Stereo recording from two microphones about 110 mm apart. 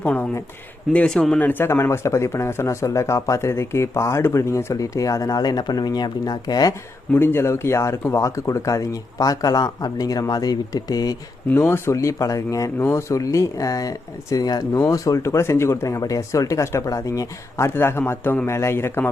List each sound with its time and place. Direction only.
0.0 s a sound: 15° left (ahead or behind)
0.9 s speech: 5° left (ahead or behind)
1.4 s speech: 15° left (ahead or behind); by 6.7 s 35° left (ahead or behind)
7.1 s speech: 20° left (ahead or behind); by 11.2 s 35° left (ahead or behind)
11.5 s speech: 25° left (ahead or behind)